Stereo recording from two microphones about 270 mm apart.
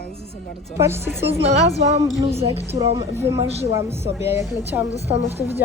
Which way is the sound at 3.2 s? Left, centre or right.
Centre.